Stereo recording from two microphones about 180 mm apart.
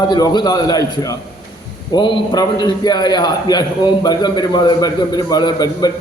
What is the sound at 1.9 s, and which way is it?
A man's voice, 25° left (ahead or behind).